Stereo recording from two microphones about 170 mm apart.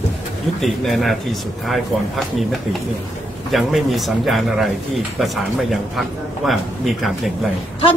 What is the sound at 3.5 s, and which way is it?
A man's voice, centre (ahead or behind).